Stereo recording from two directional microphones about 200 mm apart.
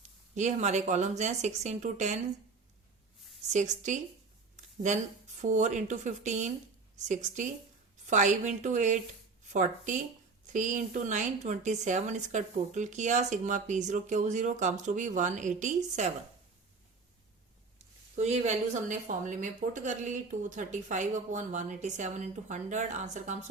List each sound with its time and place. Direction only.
0.0 s speech: 35° right (ahead or behind)
3.5 s speech: 35° right (ahead or behind)
4.5 s a sound: 35° right (ahead or behind)
5.4 s speech: 35° right (ahead or behind)
18.2 s speech: 35° right (ahead or behind)